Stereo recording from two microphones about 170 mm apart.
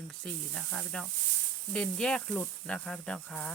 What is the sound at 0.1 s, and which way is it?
Speech, centre (ahead or behind).